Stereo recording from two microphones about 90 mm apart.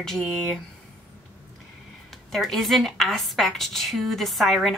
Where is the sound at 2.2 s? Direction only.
Centre (ahead or behind).